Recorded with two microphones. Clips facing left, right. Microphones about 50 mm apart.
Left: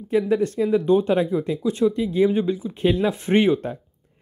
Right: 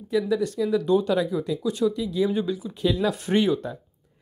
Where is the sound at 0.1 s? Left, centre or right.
Left.